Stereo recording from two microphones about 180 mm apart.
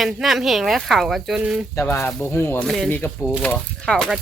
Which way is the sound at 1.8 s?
15° left (ahead or behind).